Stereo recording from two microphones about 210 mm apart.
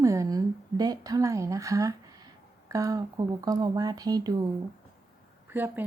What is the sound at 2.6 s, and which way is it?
Speech, 15° right (ahead or behind).